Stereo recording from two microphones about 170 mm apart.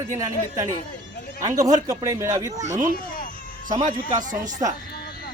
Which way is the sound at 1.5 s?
20° right (ahead or behind).